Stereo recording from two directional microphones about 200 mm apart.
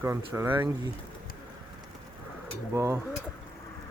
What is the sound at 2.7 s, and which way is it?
Speech, 15° right (ahead or behind).